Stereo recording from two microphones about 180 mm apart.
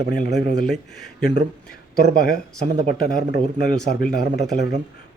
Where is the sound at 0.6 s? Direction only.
Centre (ahead or behind).